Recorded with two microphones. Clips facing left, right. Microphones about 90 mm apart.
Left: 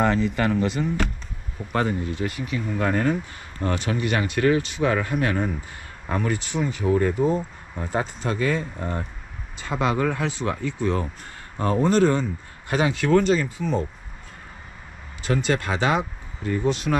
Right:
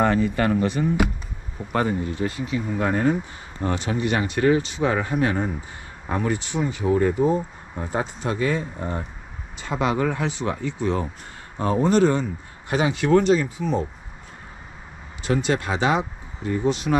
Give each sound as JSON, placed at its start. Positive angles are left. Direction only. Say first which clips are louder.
{"t": 0.2, "sound": "speech", "louder": "right 1 dB", "side_deg": -10}
{"t": 15.2, "sound": "speech", "louder": "right 1 dB", "side_deg": -20}